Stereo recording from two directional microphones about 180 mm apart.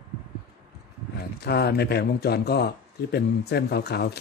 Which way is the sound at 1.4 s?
65° left (ahead or behind).